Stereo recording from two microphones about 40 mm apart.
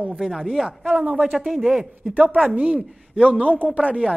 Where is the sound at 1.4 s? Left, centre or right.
Centre.